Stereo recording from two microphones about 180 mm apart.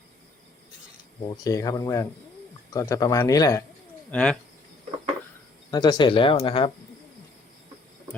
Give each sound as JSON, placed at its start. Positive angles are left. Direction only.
{"t": 1.5, "sound": "speech", "side_deg": 20}
{"t": 4.1, "sound": "speech", "side_deg": 5}
{"t": 5.7, "sound": "speech", "side_deg": 25}